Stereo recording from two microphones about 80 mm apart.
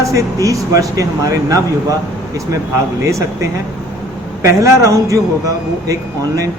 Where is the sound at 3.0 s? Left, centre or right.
Right.